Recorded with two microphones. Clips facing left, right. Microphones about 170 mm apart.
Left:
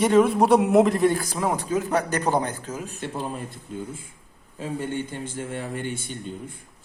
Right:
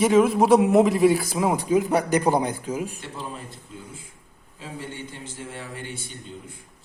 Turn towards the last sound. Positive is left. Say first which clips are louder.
# left 6 dB
turn(degrees=50)  # may be behind; listen again after turning